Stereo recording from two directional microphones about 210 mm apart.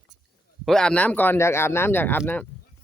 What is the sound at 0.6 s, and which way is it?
Speech, 5° left (ahead or behind).